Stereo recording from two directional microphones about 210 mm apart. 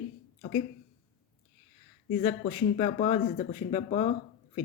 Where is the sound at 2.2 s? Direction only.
30° left (ahead or behind).